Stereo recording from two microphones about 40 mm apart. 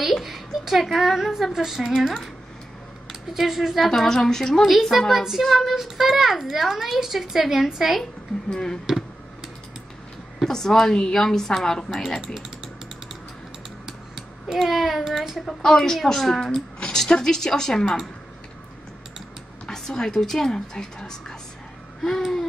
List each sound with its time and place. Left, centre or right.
0.0 s a sound: centre
0.8 s a child's voice: centre
4.0 s a woman's voice: centre
5.1 s a child's voice: centre
8.5 s a woman's voice: centre
10.4 s a woman's voice: centre
13.8 s a sound: centre
15.4 s a woman's voice: centre
19.7 s a woman's voice: centre
22.0 s a child's voice: centre